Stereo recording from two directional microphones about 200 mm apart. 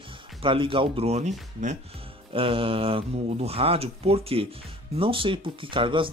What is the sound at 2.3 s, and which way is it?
Speech, 25° right (ahead or behind).